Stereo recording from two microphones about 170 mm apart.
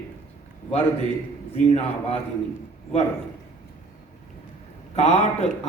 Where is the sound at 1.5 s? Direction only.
35° left (ahead or behind).